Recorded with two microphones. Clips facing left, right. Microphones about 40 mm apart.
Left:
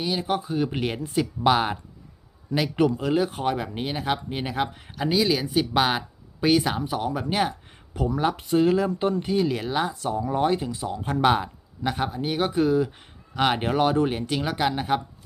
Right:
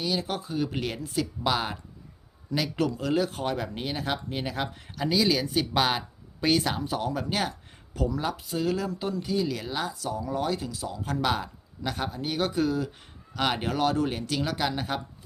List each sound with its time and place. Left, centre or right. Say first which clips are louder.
0.0 s speech: left 4 dB; left
8.1 s speech: left 7 dB; left